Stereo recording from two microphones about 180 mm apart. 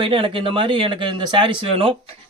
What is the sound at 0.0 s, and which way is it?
Speech, 30° right (ahead or behind).